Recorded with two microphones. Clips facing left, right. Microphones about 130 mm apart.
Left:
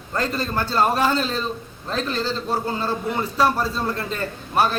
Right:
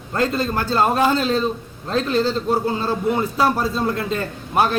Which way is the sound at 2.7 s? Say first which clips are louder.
Right 4 dB; 15° right (ahead or behind).